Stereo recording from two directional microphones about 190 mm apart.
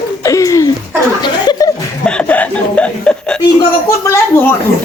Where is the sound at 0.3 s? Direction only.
15° left (ahead or behind).